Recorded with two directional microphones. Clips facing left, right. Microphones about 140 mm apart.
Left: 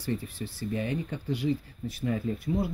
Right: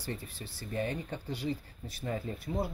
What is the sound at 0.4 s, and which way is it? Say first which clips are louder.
Speech: left 3 dB; 35° right (ahead or behind).